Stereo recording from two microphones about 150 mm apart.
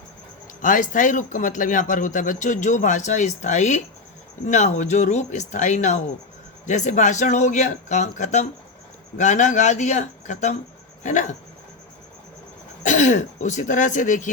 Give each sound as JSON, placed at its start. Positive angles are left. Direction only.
{"t": 0.6, "sound": "speech", "side_deg": 60}
{"t": 12.8, "sound": "speech", "side_deg": 55}